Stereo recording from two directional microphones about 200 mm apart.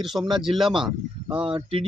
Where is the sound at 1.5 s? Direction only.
25° right (ahead or behind).